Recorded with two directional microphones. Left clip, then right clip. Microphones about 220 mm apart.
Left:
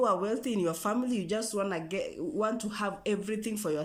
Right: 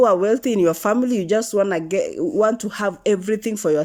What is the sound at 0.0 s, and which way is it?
Speech, 35° right (ahead or behind).